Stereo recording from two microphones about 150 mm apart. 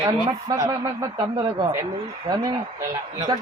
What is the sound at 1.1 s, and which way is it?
A woman's voice, 35° right (ahead or behind).